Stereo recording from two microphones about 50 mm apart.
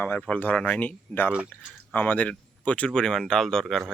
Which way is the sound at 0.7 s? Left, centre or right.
Left.